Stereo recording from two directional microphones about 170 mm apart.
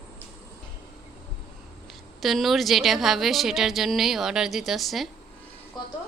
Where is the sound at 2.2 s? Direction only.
Centre (ahead or behind).